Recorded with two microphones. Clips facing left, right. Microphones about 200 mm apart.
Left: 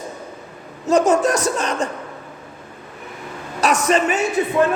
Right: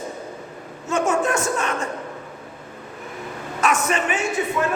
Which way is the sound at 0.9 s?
40° left (ahead or behind).